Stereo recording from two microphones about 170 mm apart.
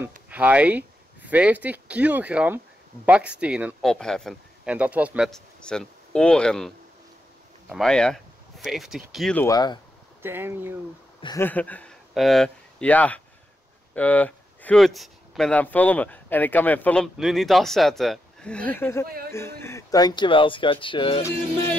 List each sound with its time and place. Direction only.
0.3 s speech: 10° right (ahead or behind)
7.7 s speech: 5° left (ahead or behind)
9.4 s speech: 20° left (ahead or behind)
10.2 s speech: 15° right (ahead or behind)
11.3 s speech: 10° left (ahead or behind); by 21.2 s 30° left (ahead or behind)